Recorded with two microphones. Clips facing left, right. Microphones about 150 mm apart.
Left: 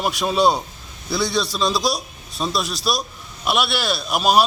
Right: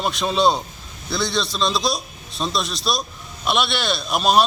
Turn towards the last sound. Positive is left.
turn(degrees=5)  # may be behind; listen again after turning